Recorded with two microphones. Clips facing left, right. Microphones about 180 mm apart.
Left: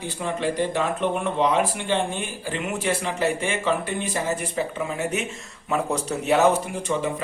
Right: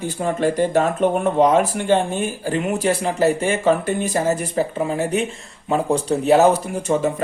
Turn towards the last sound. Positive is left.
turn(degrees=-40)  # may be behind; listen again after turning